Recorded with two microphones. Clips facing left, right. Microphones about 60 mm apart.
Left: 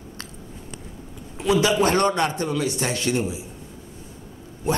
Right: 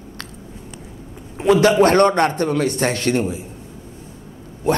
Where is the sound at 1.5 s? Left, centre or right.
Right.